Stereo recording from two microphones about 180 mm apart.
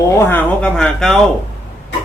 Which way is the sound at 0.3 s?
10° left (ahead or behind).